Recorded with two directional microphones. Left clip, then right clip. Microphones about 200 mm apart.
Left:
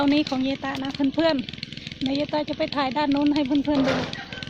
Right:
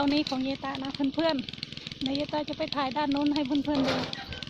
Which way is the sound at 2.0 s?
50° right (ahead or behind).